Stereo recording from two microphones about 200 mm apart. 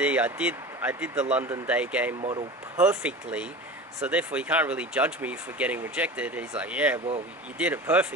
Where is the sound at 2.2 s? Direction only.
25° right (ahead or behind).